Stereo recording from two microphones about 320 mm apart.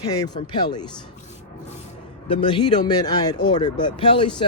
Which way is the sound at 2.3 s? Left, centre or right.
Centre.